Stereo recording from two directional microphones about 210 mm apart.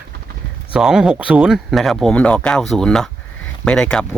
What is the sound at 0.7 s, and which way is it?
Speech, 5° right (ahead or behind).